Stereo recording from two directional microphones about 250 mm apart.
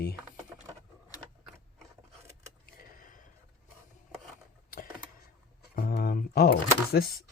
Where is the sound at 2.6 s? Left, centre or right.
Left.